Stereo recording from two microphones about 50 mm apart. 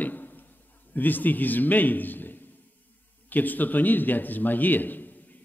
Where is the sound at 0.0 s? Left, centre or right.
Left.